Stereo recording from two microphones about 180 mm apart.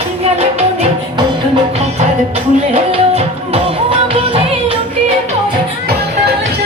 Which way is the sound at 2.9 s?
30° right (ahead or behind).